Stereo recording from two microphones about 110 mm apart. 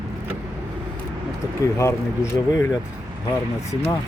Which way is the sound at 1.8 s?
25° left (ahead or behind).